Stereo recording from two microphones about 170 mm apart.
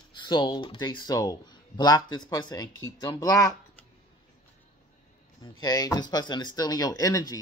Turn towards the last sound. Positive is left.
turn(degrees=20)  # may be behind; listen again after turning